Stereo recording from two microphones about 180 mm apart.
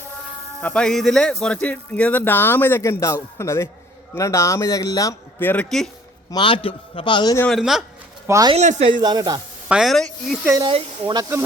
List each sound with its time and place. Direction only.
0.6 s a man's voice: 5° left (ahead or behind)
6.3 s a man's voice: 30° left (ahead or behind)
7.3 s speech: 5° left (ahead or behind)
8.3 s speech: 20° right (ahead or behind)
8.5 s speech: 35° right (ahead or behind)
9.0 s speech: 25° right (ahead or behind)
9.6 s speech: centre (ahead or behind)
10.6 s speech: 30° right (ahead or behind)